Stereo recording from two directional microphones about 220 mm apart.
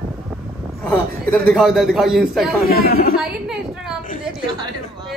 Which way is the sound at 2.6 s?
40° left (ahead or behind).